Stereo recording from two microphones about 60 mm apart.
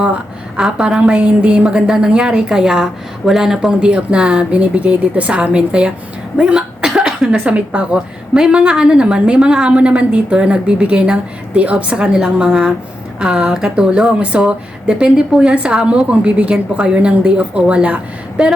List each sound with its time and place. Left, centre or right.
0.5 s speech: centre
3.8 s a woman's voice: centre
6.3 s cough: centre
8.3 s speech: centre